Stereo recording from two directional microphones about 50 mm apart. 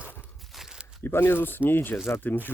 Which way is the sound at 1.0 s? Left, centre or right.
Left.